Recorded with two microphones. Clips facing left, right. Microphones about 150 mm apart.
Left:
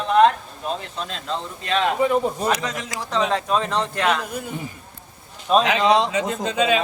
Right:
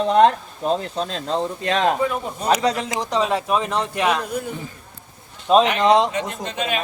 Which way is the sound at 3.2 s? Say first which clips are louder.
Left 1 dB; 10° right (ahead or behind).